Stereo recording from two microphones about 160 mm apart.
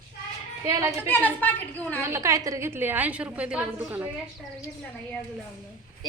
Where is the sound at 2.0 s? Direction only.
15° right (ahead or behind).